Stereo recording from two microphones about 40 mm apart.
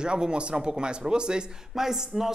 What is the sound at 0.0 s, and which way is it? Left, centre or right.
Speech, right.